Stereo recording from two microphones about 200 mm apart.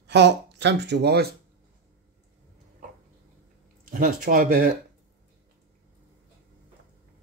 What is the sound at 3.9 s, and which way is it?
Speech, 45° right (ahead or behind).